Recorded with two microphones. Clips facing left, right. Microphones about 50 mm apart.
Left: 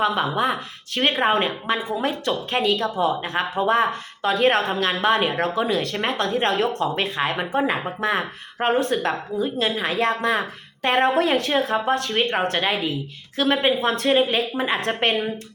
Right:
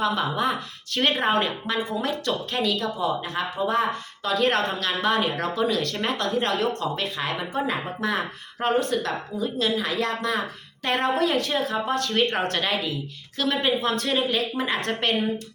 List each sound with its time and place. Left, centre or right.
0.0 s speech: left
12.2 s speech: centre; by 14.4 s left
14.5 s speech: left